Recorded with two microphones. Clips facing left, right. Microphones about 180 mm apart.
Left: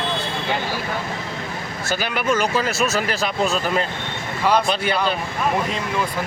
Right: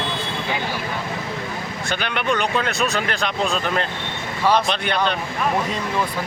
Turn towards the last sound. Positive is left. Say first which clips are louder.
# left 1 dB
turn(degrees=5)  # may be behind; listen again after turning